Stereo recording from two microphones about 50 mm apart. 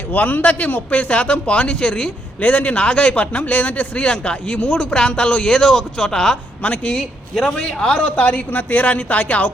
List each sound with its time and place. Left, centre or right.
0.1 s a man's voice: left; by 2.1 s centre
2.4 s a man's voice: left
3.9 s speech: centre
6.6 s a man's voice: left
7.4 s speech: centre
8.0 s a man's voice: left